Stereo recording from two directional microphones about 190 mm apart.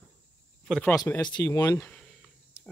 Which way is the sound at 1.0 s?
15° left (ahead or behind).